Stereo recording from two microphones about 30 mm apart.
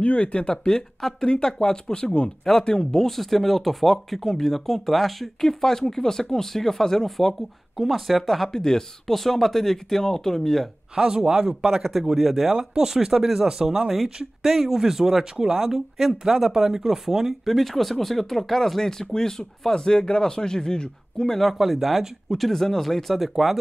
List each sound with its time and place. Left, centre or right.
0.0 s speech: left
1.2 s a man's voice: left; by 7.3 s centre
7.7 s speech: centre
8.5 s a man's voice: left
9.0 s speech: centre
11.0 s speech: right
12.2 s speech: centre
12.5 s speech: centre
13.5 s speech: right
13.7 s speech: centre
17.3 s a man's voice: centre; by 21.3 s left
21.3 s speech: centre
22.5 s speech: centre